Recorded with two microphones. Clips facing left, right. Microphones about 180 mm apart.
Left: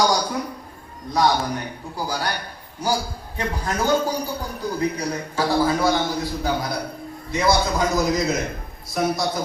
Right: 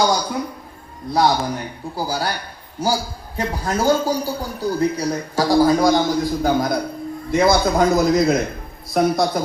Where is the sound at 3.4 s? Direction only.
35° right (ahead or behind); by 7.8 s 55° right (ahead or behind).